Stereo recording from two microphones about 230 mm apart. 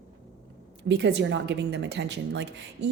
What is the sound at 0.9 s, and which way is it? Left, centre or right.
A woman's voice, right.